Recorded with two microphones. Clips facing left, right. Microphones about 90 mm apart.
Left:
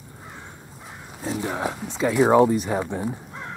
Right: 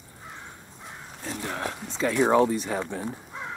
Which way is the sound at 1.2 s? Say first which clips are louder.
Left 6 dB; 5° left (ahead or behind).